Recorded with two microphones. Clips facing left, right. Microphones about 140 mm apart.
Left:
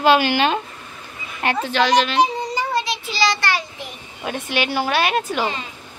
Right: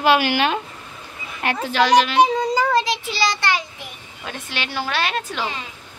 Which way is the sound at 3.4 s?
20° right (ahead or behind).